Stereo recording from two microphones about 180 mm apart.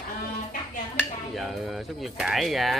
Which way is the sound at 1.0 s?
Centre (ahead or behind).